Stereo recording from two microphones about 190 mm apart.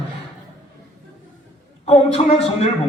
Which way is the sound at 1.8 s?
35° left (ahead or behind).